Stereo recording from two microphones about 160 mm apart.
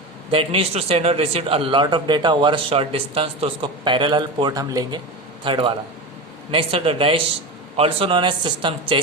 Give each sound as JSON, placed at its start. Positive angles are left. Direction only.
{"t": 0.3, "sound": "a man's voice", "side_deg": -35}